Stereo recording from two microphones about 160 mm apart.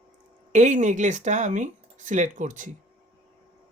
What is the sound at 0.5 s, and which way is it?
Speech, 50° right (ahead or behind).